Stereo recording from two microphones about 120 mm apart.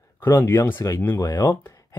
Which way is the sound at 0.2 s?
20° left (ahead or behind).